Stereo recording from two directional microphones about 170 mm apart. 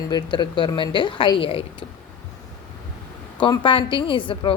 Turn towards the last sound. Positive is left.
turn(degrees=30)  # may be behind; listen again after turning